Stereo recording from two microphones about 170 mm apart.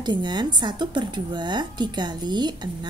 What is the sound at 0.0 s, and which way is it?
A woman's voice, 25° right (ahead or behind).